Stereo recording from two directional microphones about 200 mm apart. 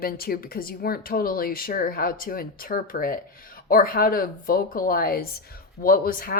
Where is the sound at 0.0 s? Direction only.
50° left (ahead or behind).